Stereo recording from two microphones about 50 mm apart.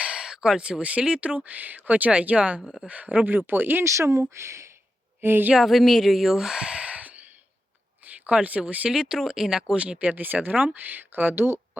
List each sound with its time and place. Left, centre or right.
0.0 s speech: centre
1.5 s speech: right
3.8 s speech: right
4.2 s speech: right
5.2 s speech: right
5.6 s speech: centre; by 8.9 s right
8.9 s speech: centre
9.8 s speech: right